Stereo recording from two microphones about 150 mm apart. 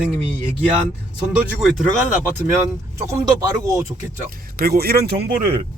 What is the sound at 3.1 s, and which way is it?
Speech, 20° right (ahead or behind).